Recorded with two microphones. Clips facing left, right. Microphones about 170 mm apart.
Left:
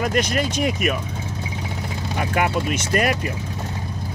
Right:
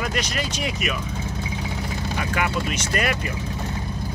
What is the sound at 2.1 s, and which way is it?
Speech, 45° left (ahead or behind).